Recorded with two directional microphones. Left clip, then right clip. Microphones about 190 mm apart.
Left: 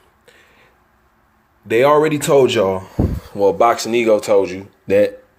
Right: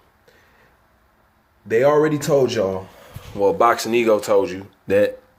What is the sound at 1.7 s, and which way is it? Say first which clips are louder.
Speech: left 3 dB; 10° left (ahead or behind).